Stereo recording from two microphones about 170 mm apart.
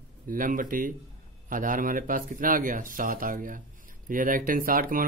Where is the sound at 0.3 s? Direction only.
55° right (ahead or behind).